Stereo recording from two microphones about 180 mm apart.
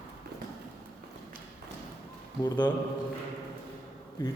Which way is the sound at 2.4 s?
25° left (ahead or behind).